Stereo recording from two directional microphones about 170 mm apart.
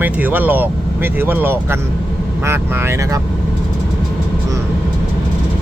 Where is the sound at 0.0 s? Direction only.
10° right (ahead or behind).